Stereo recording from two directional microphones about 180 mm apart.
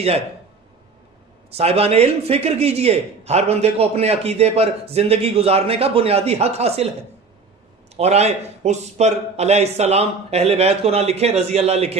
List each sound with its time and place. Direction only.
1.6 s a man's voice: 35° right (ahead or behind)
7.9 s a man's voice: 35° right (ahead or behind)